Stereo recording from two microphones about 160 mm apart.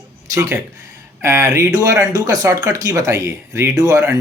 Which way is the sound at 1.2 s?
15° right (ahead or behind).